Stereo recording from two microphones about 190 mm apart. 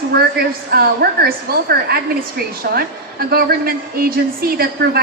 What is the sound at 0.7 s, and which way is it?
A woman's voice, 55° right (ahead or behind).